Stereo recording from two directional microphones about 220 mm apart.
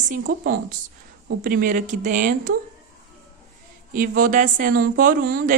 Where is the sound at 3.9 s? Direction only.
40° right (ahead or behind).